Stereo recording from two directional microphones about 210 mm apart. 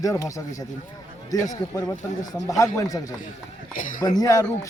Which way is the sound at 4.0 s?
20° left (ahead or behind).